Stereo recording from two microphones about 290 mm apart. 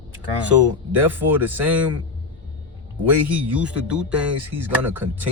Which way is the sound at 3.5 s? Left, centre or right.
Centre.